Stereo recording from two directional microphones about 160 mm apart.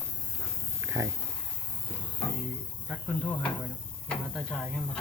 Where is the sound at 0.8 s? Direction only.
20° right (ahead or behind).